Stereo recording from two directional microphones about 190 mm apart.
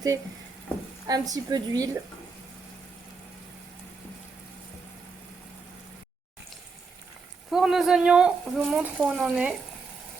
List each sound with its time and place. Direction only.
1.0 s a woman's voice: 20° right (ahead or behind)
7.5 s speech: centre (ahead or behind)